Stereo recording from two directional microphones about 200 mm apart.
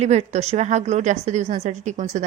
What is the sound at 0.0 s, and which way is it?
A woman's voice, 35° right (ahead or behind).